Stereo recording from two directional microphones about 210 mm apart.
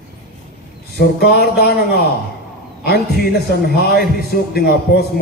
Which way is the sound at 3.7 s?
50° left (ahead or behind).